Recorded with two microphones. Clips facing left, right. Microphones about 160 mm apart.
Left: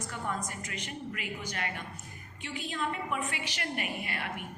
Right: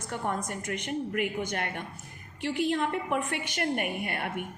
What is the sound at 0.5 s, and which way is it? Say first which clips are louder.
A woman's voice: right 8 dB; 55° right (ahead or behind).